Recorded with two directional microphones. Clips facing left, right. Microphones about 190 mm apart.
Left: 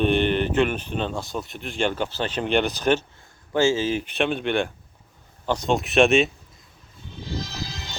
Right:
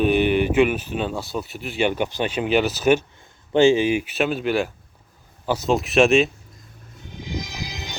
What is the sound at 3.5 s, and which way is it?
Speech, 20° right (ahead or behind).